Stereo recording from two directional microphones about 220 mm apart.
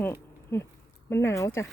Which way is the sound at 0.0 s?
10° left (ahead or behind).